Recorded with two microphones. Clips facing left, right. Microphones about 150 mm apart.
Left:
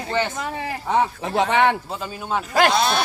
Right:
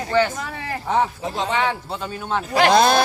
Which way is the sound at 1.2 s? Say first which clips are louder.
Left 4 dB; 65° left (ahead or behind).